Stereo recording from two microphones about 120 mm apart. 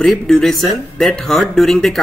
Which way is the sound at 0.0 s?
5° left (ahead or behind).